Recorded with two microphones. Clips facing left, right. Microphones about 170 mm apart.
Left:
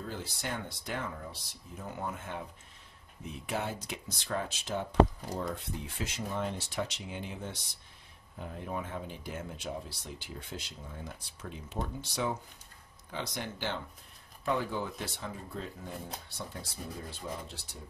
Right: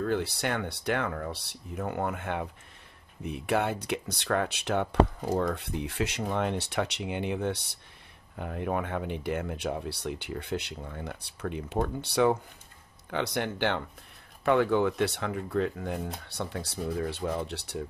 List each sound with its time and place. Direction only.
0.0 s speech: 70° right (ahead or behind)